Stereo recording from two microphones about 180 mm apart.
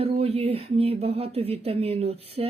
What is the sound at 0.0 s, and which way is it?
Speech, 35° right (ahead or behind).